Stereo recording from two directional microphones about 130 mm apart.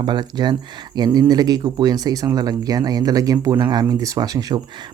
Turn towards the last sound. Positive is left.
turn(degrees=-30)  # may be behind; listen again after turning